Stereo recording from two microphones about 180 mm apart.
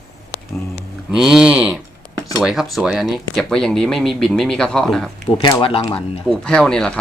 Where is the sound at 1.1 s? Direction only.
Centre (ahead or behind).